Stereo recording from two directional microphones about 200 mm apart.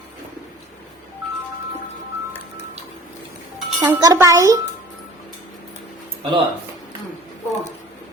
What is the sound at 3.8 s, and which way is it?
Speech, 20° right (ahead or behind).